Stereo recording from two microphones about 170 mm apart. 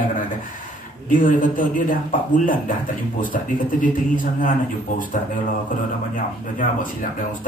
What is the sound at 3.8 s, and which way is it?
Speech, 55° left (ahead or behind).